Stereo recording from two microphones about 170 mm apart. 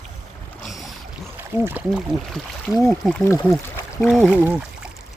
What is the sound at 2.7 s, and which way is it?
Speech, 20° left (ahead or behind).